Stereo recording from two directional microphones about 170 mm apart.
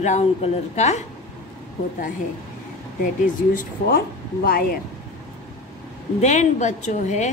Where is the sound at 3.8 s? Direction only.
60° left (ahead or behind).